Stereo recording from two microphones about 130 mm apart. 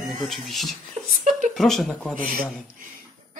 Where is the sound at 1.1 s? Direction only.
70° right (ahead or behind).